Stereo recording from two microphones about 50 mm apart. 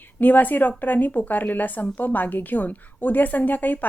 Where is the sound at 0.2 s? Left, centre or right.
Left.